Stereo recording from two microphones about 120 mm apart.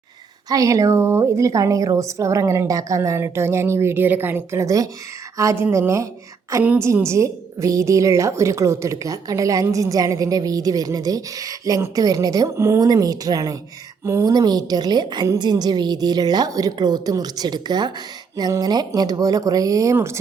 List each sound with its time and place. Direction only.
0.4 s a woman's voice: 30° right (ahead or behind)